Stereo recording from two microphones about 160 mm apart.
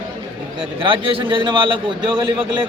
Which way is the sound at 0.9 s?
30° right (ahead or behind).